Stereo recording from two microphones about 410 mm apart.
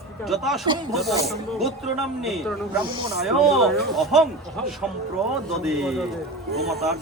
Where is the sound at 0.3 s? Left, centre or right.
Centre.